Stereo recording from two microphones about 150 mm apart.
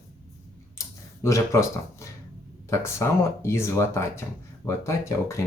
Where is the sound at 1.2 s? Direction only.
20° left (ahead or behind).